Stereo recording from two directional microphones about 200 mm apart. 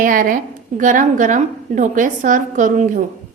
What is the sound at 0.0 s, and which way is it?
A woman's voice, 45° right (ahead or behind).